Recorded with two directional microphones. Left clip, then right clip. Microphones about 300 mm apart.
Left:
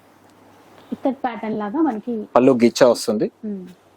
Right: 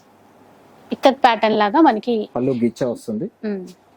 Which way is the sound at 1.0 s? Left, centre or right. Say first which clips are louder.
Right 10 dB; centre.